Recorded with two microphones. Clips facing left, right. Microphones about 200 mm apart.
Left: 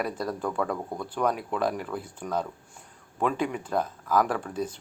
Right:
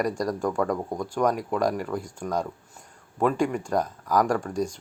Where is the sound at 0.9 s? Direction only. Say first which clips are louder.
Right 2 dB; 10° right (ahead or behind).